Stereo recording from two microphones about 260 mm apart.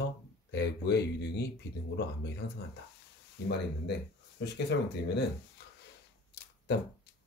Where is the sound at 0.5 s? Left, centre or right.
Left.